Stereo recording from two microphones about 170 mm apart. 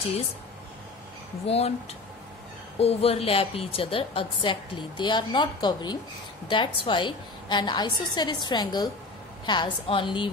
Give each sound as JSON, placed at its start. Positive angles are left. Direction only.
{"t": 1.4, "sound": "a woman's voice", "side_deg": 35}
{"t": 2.8, "sound": "a woman's voice", "side_deg": 35}